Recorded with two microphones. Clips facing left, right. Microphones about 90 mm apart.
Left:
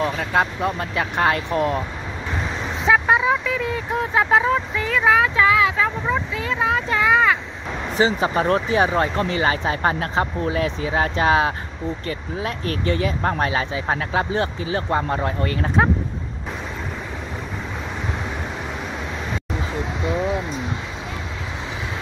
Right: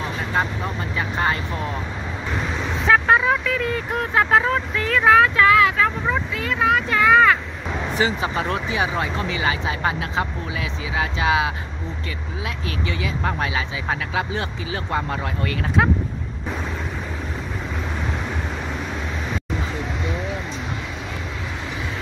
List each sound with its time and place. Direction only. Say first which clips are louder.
0.2 s speech: left 3 dB; 65° left (ahead or behind)
2.9 s speech: even; 15° left (ahead or behind)
8.0 s speech: left 4 dB; 35° left (ahead or behind)